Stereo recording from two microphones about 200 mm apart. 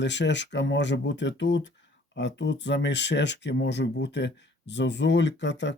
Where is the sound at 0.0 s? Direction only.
60° left (ahead or behind).